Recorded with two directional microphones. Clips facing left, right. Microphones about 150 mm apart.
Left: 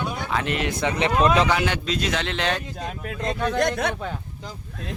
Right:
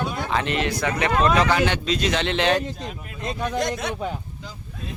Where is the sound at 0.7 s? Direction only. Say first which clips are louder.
Left 1 dB; 25° left (ahead or behind).